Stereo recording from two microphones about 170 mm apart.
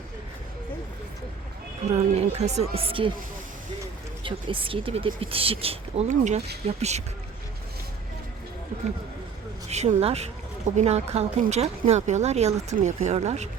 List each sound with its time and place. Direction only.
1.8 s speech: 35° right (ahead or behind)
4.2 s speech: 30° right (ahead or behind)
9.6 s speech: 40° right (ahead or behind)